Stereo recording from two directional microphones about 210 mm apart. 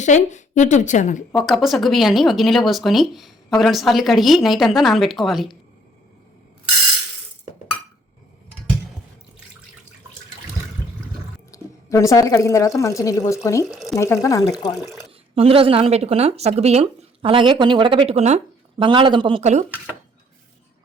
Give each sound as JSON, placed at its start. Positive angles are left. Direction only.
{"t": 0.0, "sound": "a woman's voice", "side_deg": 35}
{"t": 1.5, "sound": "a woman's voice", "side_deg": 0}
{"t": 11.5, "sound": "a woman's voice", "side_deg": 15}
{"t": 13.7, "sound": "speech", "side_deg": 0}
{"t": 13.9, "sound": "a woman's voice", "side_deg": 15}
{"t": 14.8, "sound": "a woman's voice", "side_deg": 0}
{"t": 15.4, "sound": "speech", "side_deg": -25}